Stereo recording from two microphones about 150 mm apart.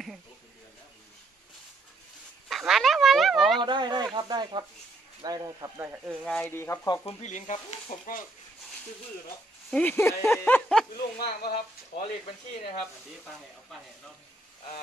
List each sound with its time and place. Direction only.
2.4 s a sound: centre (ahead or behind)
3.6 s speech: 30° right (ahead or behind)
6.2 s speech: 10° left (ahead or behind)
6.9 s speech: 45° left (ahead or behind)
9.7 s speech: 10° left (ahead or behind)
10.2 s a sound: 5° left (ahead or behind)
11.1 s speech: 90° left